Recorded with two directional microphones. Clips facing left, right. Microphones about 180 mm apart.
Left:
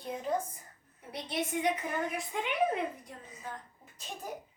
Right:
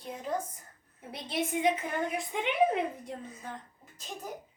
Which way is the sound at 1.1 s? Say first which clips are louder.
Right 2 dB; 25° right (ahead or behind).